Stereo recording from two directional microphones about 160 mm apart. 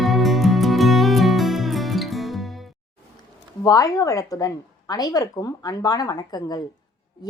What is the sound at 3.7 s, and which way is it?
A woman's voice, 20° left (ahead or behind).